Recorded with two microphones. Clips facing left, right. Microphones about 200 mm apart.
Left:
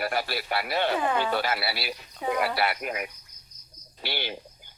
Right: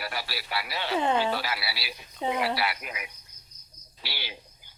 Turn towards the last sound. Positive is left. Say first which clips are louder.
# left 8 dB
turn(degrees=55)  # may be behind; listen again after turning